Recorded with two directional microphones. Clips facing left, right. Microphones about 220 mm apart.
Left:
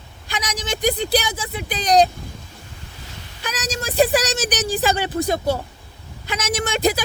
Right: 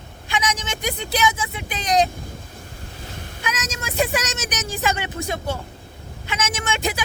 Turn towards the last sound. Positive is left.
turn(degrees=35)  # may be behind; listen again after turning